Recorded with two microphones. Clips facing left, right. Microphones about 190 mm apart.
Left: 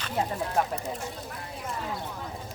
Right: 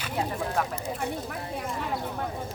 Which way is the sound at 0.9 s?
60° right (ahead or behind).